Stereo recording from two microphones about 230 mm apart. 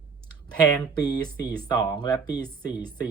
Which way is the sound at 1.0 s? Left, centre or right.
Centre.